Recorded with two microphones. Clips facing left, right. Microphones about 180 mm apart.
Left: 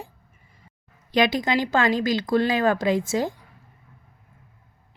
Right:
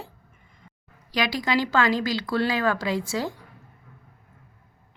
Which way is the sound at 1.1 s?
25° left (ahead or behind).